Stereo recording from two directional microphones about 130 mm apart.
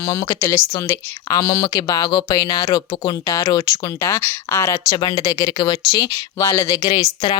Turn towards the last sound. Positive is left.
turn(degrees=35)  # may be behind; listen again after turning